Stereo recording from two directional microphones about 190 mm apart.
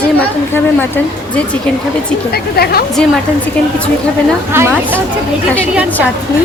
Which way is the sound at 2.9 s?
5° left (ahead or behind).